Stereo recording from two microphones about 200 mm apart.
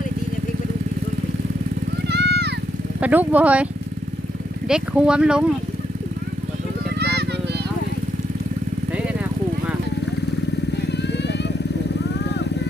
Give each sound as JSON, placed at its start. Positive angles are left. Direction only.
{"t": 2.0, "sound": "vehicle", "side_deg": -55}
{"t": 3.0, "sound": "speech", "side_deg": -10}
{"t": 4.7, "sound": "speech", "side_deg": -5}
{"t": 7.0, "sound": "vehicle", "side_deg": -55}
{"t": 10.9, "sound": "vehicle", "side_deg": 60}